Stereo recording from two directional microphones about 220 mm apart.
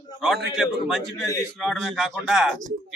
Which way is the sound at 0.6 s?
Centre (ahead or behind).